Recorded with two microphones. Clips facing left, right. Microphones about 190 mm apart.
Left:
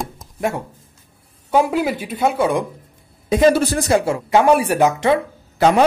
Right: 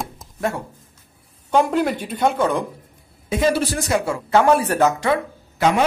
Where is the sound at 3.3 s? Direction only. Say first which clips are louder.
Left 5 dB; 35° left (ahead or behind).